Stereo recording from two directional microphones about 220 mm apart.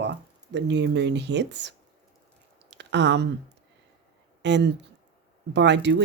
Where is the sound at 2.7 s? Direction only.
55° right (ahead or behind).